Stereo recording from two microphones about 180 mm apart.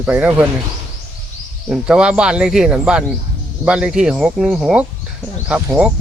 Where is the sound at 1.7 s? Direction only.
5° right (ahead or behind).